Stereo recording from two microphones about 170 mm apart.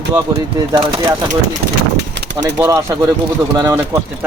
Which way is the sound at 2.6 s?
20° right (ahead or behind).